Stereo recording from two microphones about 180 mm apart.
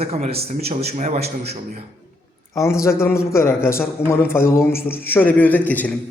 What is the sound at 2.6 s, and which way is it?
A man's voice, 15° left (ahead or behind).